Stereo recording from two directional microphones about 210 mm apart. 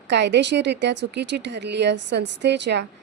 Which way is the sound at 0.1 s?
55° right (ahead or behind).